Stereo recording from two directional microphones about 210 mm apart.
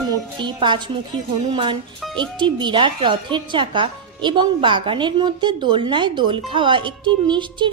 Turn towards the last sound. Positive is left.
turn(degrees=-20)  # may be behind; listen again after turning